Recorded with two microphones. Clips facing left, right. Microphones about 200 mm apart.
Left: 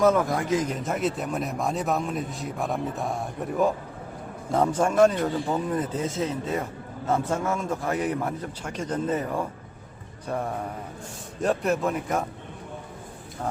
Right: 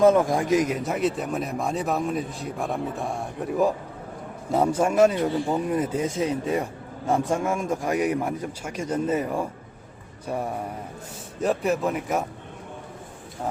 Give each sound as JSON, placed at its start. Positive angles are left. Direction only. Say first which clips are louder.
{"t": 0.0, "sound": "a man's voice", "louder": "right 3 dB", "side_deg": -15}